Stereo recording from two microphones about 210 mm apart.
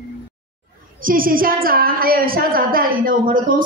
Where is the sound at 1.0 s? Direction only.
40° right (ahead or behind).